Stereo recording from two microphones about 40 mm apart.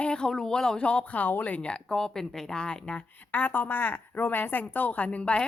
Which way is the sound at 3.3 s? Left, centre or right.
Left.